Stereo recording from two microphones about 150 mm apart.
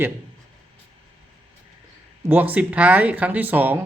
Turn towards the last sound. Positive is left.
turn(degrees=-10)  # may be behind; listen again after turning